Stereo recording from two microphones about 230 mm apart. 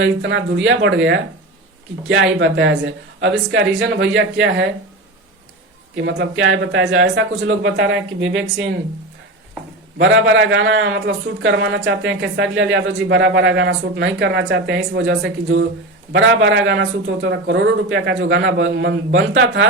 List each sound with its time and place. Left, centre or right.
0.0 s a man's voice: right
6.0 s speech: right
10.0 s a man's voice: right